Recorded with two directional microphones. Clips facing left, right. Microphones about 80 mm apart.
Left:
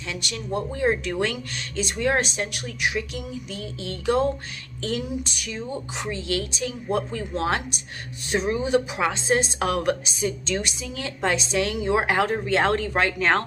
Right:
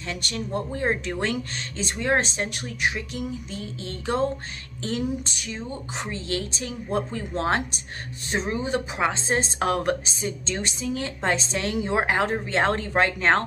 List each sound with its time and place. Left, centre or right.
0.1 s a woman's voice: right